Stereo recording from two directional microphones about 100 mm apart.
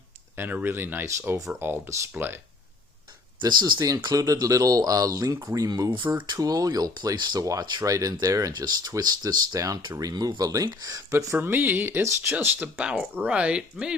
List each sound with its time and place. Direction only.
0.3 s speech: 20° right (ahead or behind)
3.4 s speech: 40° right (ahead or behind); by 12.6 s 20° right (ahead or behind)
12.7 s speech: 10° right (ahead or behind)